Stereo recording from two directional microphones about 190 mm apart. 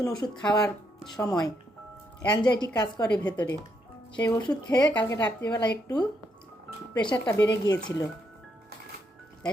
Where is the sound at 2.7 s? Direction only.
20° left (ahead or behind).